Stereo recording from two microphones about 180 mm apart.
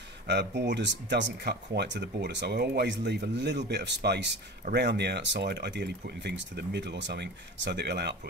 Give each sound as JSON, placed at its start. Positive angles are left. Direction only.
{"t": 0.3, "sound": "speech", "side_deg": -70}